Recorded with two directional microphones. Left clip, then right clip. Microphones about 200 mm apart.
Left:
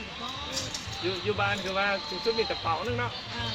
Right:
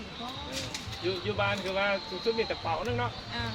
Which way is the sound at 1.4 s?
45° left (ahead or behind).